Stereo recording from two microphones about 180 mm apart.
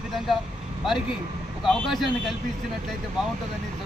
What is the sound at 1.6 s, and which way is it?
Speech, centre (ahead or behind).